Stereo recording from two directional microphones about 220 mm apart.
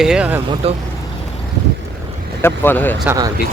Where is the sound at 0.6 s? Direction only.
25° right (ahead or behind).